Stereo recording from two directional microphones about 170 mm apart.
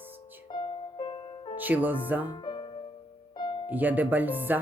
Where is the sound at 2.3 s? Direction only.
25° left (ahead or behind).